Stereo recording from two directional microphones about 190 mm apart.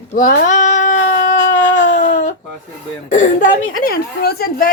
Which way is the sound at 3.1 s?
45° left (ahead or behind).